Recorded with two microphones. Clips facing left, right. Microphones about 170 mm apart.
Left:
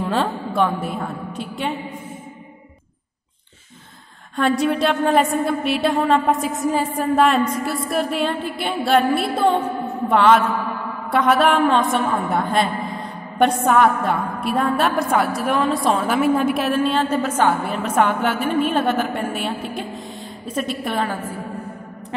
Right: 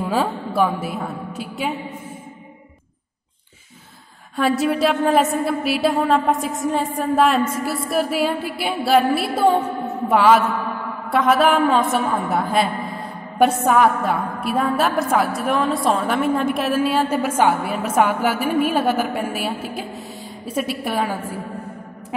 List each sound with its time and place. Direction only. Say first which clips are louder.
0.0 s a woman's voice: even; 10° right (ahead or behind)
4.4 s a woman's voice: even; 5° right (ahead or behind)